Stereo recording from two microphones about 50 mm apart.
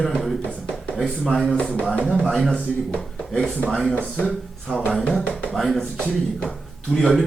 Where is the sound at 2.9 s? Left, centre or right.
Left.